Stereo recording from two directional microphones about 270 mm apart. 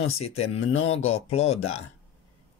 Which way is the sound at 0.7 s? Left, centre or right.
Left.